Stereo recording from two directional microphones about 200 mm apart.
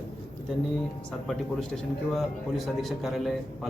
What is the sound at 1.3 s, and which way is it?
A man's voice, 5° left (ahead or behind).